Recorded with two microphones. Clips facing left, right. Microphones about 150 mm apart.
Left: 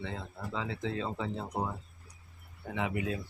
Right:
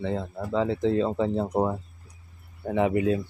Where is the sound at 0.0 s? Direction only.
40° right (ahead or behind).